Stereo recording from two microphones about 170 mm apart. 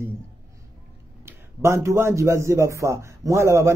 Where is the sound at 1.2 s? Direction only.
15° right (ahead or behind).